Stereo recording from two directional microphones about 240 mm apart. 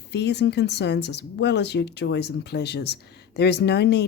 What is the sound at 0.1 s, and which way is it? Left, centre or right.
Speech, left.